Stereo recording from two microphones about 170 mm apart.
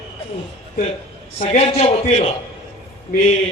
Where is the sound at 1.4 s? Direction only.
35° left (ahead or behind).